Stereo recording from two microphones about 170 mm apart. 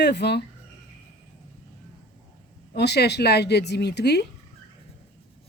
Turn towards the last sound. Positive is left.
turn(degrees=75)  # may be behind; listen again after turning